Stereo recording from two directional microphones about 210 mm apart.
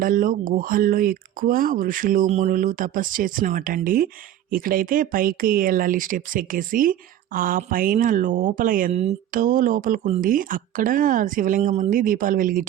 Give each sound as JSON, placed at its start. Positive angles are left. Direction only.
{"t": 0.0, "sound": "speech", "side_deg": -40}